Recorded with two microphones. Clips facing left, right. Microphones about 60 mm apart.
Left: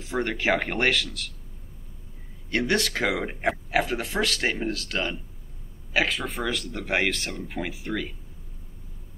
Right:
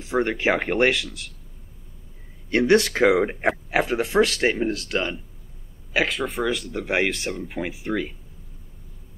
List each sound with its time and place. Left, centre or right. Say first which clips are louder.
0.0 s speech: right 4 dB; centre
2.7 s speech: right 9 dB; right
4.4 s speech: right 5 dB; centre
5.9 s speech: right 2 dB; centre